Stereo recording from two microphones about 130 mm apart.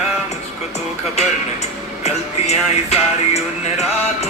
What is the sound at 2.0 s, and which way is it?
Music, 55° left (ahead or behind).